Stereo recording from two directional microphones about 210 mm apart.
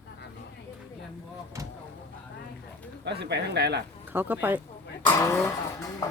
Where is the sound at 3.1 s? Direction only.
50° right (ahead or behind).